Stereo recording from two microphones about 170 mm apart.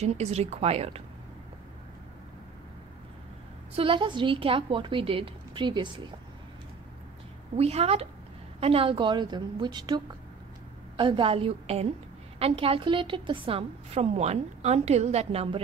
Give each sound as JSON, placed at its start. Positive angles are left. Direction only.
{"t": 0.0, "sound": "a woman's voice", "side_deg": -40}
{"t": 3.7, "sound": "speech", "side_deg": -30}
{"t": 7.5, "sound": "a woman's voice", "side_deg": -35}